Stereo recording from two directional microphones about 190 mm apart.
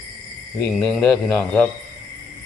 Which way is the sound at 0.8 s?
Centre (ahead or behind).